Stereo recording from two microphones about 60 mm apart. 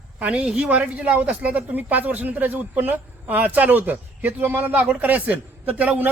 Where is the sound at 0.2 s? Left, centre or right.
Centre.